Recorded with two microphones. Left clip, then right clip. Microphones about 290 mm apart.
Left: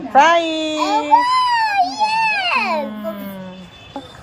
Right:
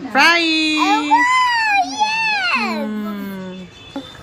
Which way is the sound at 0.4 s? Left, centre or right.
Right.